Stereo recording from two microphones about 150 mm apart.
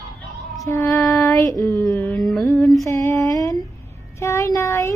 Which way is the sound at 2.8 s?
20° left (ahead or behind).